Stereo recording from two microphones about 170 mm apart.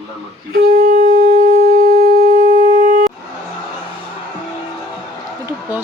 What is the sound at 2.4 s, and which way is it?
Shofar, 50° right (ahead or behind).